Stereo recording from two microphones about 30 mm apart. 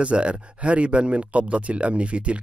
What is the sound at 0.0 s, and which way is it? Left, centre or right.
Speech, right.